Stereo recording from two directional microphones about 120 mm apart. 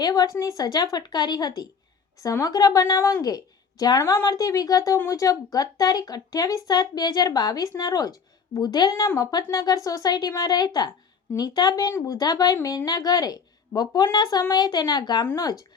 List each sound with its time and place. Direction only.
0.0 s a woman's voice: 30° left (ahead or behind)